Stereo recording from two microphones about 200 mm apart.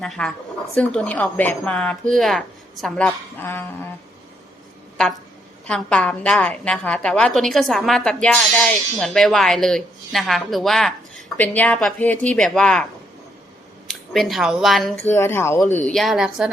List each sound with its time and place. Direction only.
0.0 s a woman's voice: 5° left (ahead or behind)
5.6 s a woman's voice: 5° left (ahead or behind)
14.9 s speech: 15° left (ahead or behind); by 16.5 s 5° right (ahead or behind)